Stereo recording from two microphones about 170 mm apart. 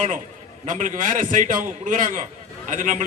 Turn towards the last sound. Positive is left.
turn(degrees=-50)  # may be behind; listen again after turning